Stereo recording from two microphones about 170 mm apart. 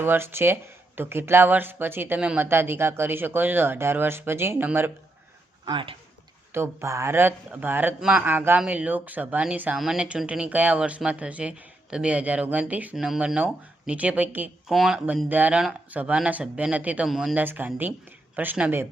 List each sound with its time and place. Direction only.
0.0 s speech: 15° right (ahead or behind)
5.6 s speech: 30° right (ahead or behind)
6.5 s speech: 15° right (ahead or behind)